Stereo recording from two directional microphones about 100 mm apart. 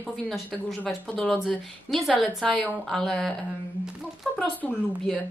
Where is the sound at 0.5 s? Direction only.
Centre (ahead or behind).